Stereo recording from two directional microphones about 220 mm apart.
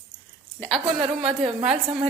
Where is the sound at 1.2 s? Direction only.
25° right (ahead or behind).